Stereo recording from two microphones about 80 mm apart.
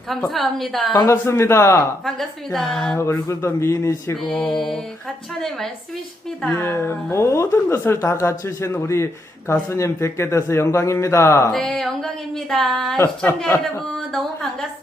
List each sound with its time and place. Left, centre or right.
0.3 s speech: centre
1.1 s a woman's voice: left
2.0 s speech: centre
3.0 s a woman's voice: left
4.3 s mantra: centre
5.4 s speech: centre
6.6 s a woman's voice: left
11.5 s a woman's voice: centre